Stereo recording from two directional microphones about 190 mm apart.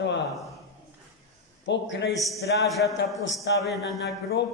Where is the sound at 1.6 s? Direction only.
70° left (ahead or behind).